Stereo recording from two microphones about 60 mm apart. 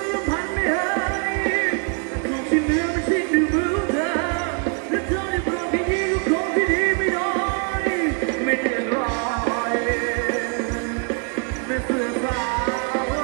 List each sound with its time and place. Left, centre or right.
0.6 s music: centre
11.7 s music: centre